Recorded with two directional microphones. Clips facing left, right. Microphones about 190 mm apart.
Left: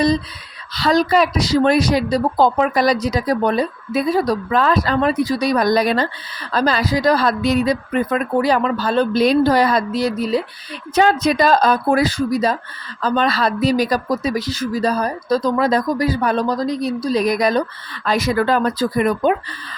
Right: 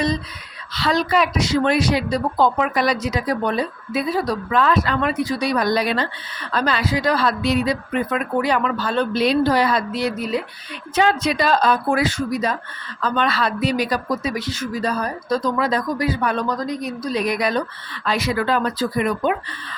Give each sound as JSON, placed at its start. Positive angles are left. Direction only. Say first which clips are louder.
{"t": 0.7, "sound": "a woman's voice", "louder": "left 4 dB", "side_deg": 40}